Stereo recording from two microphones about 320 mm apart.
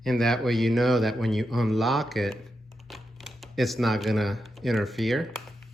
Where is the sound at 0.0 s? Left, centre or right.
Centre.